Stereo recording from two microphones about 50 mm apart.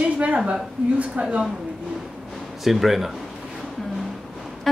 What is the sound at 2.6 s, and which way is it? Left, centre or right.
Speech, centre.